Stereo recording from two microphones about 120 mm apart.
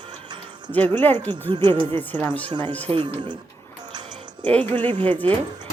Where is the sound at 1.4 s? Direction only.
40° right (ahead or behind).